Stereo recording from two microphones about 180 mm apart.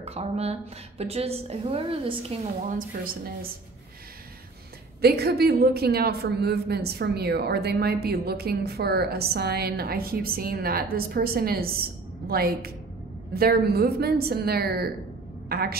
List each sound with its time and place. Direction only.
0.0 s a woman's voice: 35° right (ahead or behind)
5.0 s a woman's voice: 60° right (ahead or behind)